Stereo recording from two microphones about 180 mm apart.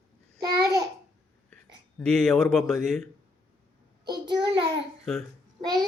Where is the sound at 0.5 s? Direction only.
20° right (ahead or behind).